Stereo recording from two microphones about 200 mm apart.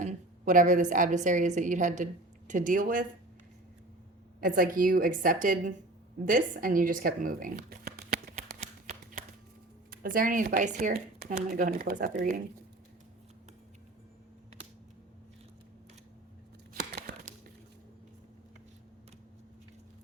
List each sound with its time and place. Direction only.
0.0 s a woman's voice: 40° right (ahead or behind)
4.4 s speech: 45° right (ahead or behind)
8.6 s shuffling cards: 45° right (ahead or behind)
9.9 s speech: 45° right (ahead or behind)